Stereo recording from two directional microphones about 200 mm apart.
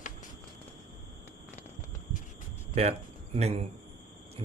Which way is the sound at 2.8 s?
30° right (ahead or behind).